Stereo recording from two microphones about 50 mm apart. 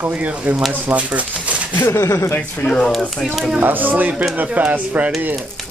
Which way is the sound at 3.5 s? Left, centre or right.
Right.